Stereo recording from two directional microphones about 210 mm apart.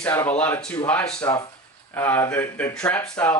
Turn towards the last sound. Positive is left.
turn(degrees=5)  # may be behind; listen again after turning